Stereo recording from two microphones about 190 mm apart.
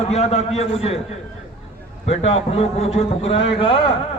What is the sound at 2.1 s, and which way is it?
A man's voice, 35° left (ahead or behind).